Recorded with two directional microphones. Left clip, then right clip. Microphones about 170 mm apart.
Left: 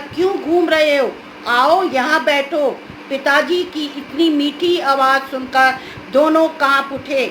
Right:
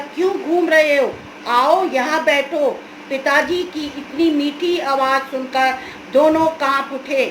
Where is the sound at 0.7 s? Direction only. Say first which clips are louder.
Right 3 dB; 25° left (ahead or behind).